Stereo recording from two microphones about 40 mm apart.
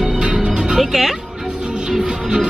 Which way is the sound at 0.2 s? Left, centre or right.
Right.